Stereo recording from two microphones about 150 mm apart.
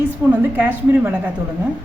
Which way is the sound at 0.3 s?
10° right (ahead or behind).